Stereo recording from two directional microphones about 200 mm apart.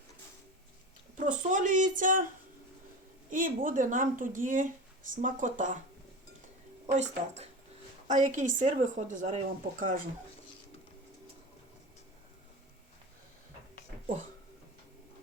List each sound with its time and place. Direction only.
1.2 s speech: 40° right (ahead or behind)
3.2 s speech: 40° right (ahead or behind)
6.9 s speech: 35° right (ahead or behind)